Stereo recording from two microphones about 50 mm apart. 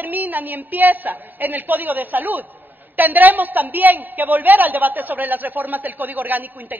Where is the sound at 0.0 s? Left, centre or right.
Right.